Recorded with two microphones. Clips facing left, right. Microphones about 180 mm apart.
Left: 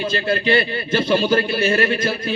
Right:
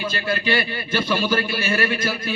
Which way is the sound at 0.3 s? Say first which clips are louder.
Left 4 dB; 25° left (ahead or behind).